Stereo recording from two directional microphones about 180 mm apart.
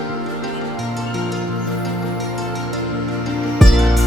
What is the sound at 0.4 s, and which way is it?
Music, centre (ahead or behind).